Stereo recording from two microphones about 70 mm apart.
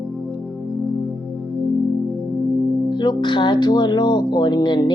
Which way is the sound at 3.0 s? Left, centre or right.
Left.